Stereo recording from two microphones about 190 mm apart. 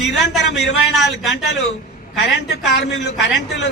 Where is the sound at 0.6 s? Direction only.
65° left (ahead or behind).